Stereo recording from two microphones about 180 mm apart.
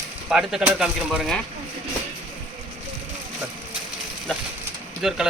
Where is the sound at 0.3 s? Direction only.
5° right (ahead or behind).